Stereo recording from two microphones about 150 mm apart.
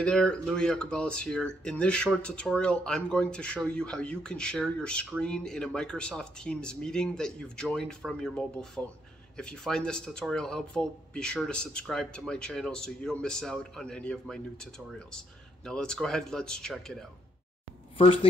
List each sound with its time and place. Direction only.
0.0 s speech: 5° left (ahead or behind)
17.9 s speech: 35° left (ahead or behind)